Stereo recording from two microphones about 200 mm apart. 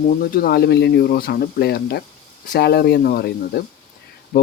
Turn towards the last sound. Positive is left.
turn(degrees=50)  # may be behind; listen again after turning